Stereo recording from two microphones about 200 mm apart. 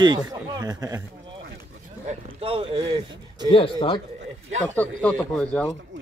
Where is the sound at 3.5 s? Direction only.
25° left (ahead or behind).